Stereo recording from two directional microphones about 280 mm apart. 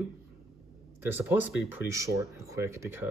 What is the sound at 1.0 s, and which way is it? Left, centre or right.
Speech, centre.